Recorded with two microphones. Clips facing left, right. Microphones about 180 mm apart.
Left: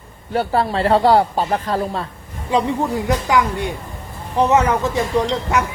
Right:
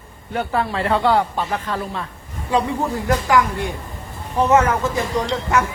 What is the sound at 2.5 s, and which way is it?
A woman's voice, 20° left (ahead or behind).